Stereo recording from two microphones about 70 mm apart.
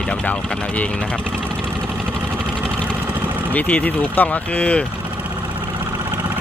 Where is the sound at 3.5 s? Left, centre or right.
Left.